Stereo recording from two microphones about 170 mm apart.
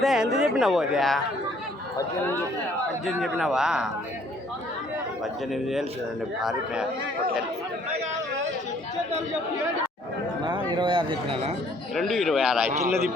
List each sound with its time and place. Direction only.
0.0 s speech: centre (ahead or behind)
3.2 s speech: centre (ahead or behind)
5.2 s speech: centre (ahead or behind)
10.4 s speech: 30° right (ahead or behind)
11.9 s speech: centre (ahead or behind)